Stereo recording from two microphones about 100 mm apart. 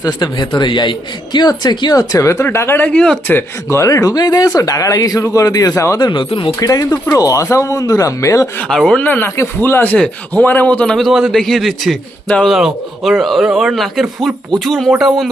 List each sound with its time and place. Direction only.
0.0 s speech: 40° left (ahead or behind)
2.0 s speech: 35° left (ahead or behind)
2.9 s speech: 10° left (ahead or behind)
3.3 s speech: 30° left (ahead or behind)
6.0 s speech: 50° left (ahead or behind)
6.6 s speech: 40° left (ahead or behind)
8.6 s a man's voice: 5° left (ahead or behind)